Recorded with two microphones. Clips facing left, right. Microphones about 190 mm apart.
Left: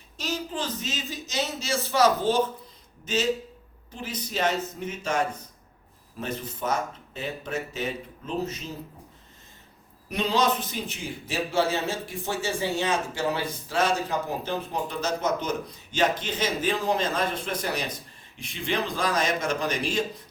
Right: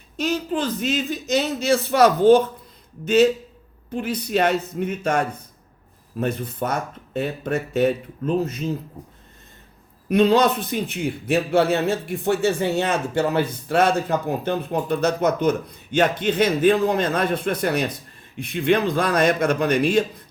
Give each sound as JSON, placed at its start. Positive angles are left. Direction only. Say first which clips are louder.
{"t": 0.2, "sound": "a man's voice", "louder": "right 8 dB", "side_deg": -60}
{"t": 10.1, "sound": "a man's voice", "louder": "right 8 dB", "side_deg": -55}